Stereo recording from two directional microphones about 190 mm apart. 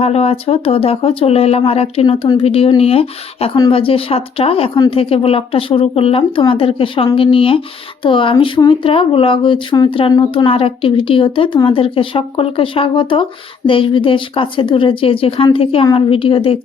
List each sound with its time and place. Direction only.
0.0 s speech: 30° left (ahead or behind)